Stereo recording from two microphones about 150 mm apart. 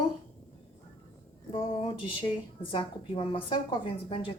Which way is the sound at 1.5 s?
35° left (ahead or behind).